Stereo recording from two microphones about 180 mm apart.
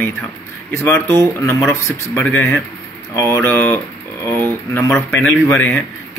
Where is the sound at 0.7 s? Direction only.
15° left (ahead or behind).